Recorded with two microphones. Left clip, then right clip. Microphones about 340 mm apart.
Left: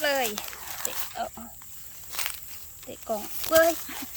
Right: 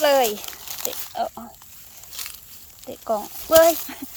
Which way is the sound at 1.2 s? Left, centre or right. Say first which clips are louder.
Right 9 dB; centre.